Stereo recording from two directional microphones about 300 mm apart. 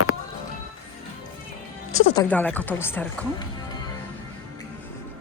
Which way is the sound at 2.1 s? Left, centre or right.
Centre.